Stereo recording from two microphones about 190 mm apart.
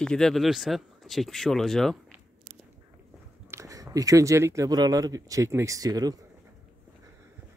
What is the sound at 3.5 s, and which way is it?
Speech, 15° right (ahead or behind).